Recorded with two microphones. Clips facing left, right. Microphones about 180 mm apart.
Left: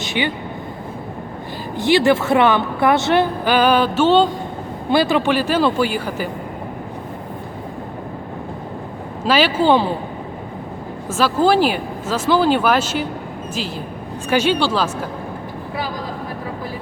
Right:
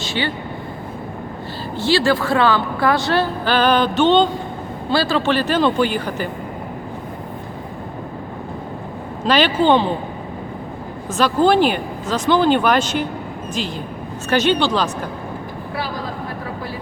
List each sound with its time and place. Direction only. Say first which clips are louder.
0.0 s vehicle: left 1 dB; 15° left (ahead or behind)
1.7 s a woman's voice: left 3 dB; 20° left (ahead or behind)
4.9 s speech: left 2 dB; 20° left (ahead or behind)
9.2 s speech: even; 5° left (ahead or behind)
11.1 s speech: even; 5° left (ahead or behind)
14.3 s speech: even; 10° left (ahead or behind)